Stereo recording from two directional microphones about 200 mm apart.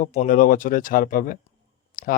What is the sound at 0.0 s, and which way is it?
Speech, 40° left (ahead or behind).